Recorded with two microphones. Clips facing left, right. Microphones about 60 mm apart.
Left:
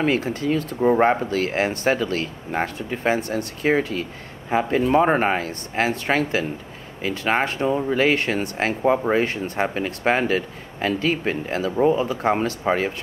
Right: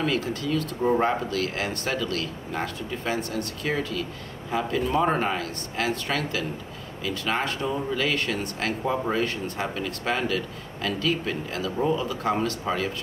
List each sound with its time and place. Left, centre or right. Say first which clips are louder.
0.0 s speech: left 5 dB; left